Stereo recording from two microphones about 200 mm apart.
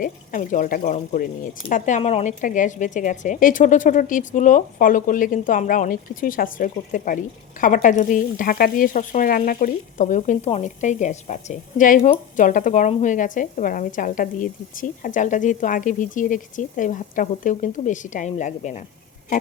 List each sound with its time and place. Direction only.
0.0 s speech: 40° left (ahead or behind)